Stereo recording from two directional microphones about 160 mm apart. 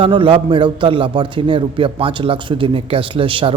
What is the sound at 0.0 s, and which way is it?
A man's voice, 30° right (ahead or behind).